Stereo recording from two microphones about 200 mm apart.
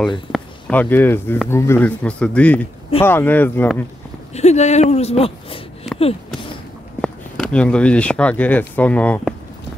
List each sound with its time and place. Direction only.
0.3 s speech: 5° left (ahead or behind)
4.3 s speech: 35° left (ahead or behind)
7.0 s speech: 5° left (ahead or behind)